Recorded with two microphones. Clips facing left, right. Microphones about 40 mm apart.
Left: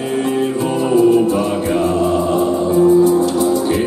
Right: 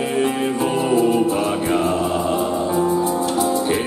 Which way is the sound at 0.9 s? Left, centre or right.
Centre.